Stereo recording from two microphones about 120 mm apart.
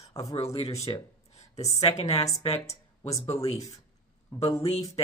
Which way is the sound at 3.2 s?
25° left (ahead or behind).